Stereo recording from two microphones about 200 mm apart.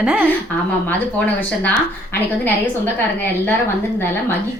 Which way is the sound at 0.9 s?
10° left (ahead or behind).